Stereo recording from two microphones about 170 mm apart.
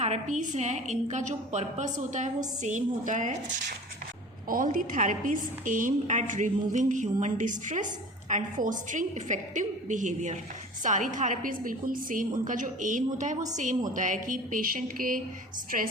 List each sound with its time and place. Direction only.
0.0 s a woman's voice: 45° right (ahead or behind)
4.4 s a woman's voice: 55° right (ahead or behind)